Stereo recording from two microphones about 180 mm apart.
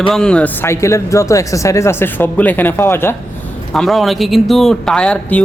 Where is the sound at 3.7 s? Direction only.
Centre (ahead or behind).